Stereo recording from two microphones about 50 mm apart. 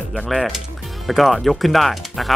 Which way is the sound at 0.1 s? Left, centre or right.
Centre.